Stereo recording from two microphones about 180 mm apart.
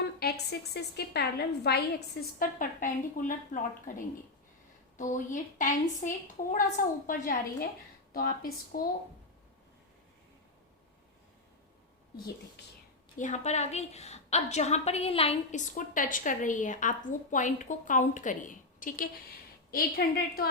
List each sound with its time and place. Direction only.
0.2 s a woman's voice: 65° left (ahead or behind); by 6.1 s 45° left (ahead or behind)
7.1 s a woman's voice: 50° left (ahead or behind)
13.1 s a woman's voice: 45° left (ahead or behind)